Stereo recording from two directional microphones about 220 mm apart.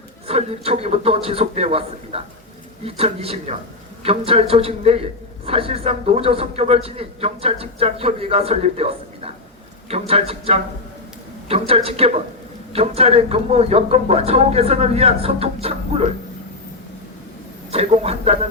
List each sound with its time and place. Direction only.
0.3 s a man's voice: 25° right (ahead or behind)
17.7 s a man's voice: 25° right (ahead or behind)